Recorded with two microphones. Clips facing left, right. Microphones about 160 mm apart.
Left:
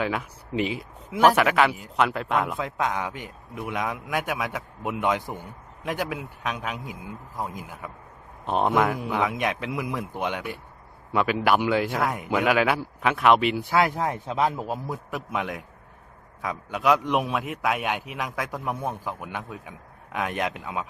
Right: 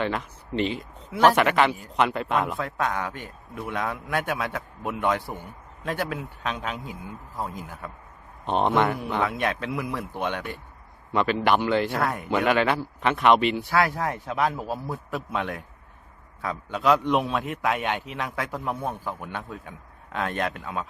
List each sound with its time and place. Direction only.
0.0 s a man's voice: 5° left (ahead or behind)
2.6 s a man's voice: 15° left (ahead or behind); by 13.6 s centre (ahead or behind)
13.7 s a man's voice: 20° left (ahead or behind)